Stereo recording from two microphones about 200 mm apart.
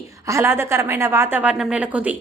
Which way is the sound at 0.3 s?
15° right (ahead or behind).